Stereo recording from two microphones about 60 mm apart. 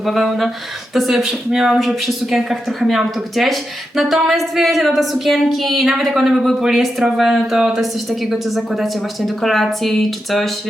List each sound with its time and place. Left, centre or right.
0.0 s a woman's voice: centre